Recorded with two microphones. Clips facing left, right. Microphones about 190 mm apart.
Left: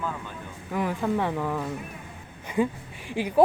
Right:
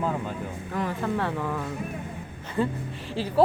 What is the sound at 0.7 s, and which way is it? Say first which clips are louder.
Speech: left 2 dB; 10° left (ahead or behind).